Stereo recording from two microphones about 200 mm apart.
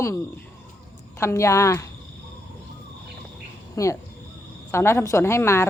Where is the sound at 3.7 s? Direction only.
15° left (ahead or behind).